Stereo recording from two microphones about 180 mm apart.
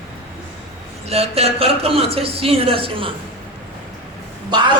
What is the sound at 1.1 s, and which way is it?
Speech, 35° right (ahead or behind).